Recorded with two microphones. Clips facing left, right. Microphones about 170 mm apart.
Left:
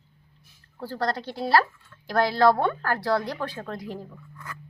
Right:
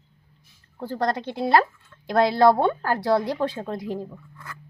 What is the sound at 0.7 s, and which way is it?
A woman's voice, 20° right (ahead or behind).